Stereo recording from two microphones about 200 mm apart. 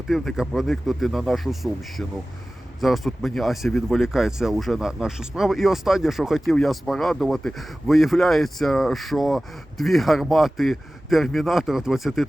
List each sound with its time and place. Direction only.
0.1 s speech: centre (ahead or behind)